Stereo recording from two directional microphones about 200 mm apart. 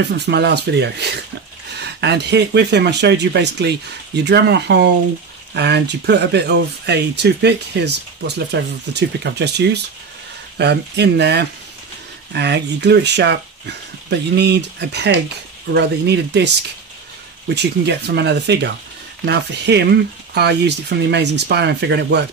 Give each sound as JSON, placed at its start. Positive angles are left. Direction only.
{"t": 0.0, "sound": "speech", "side_deg": -55}
{"t": 17.6, "sound": "speech", "side_deg": -55}